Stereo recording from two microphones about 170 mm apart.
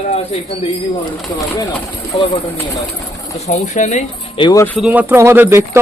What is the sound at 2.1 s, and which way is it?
Speech, 35° left (ahead or behind).